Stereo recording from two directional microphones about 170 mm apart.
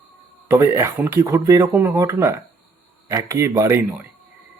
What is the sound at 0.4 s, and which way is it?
Speech, 15° right (ahead or behind).